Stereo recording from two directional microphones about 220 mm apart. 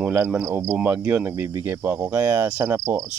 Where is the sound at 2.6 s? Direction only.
15° right (ahead or behind).